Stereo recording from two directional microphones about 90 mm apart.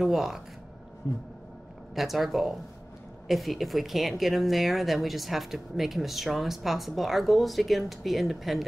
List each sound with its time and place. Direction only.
0.0 s speech: centre (ahead or behind)
1.0 s speech: 30° left (ahead or behind)
2.0 s speech: centre (ahead or behind)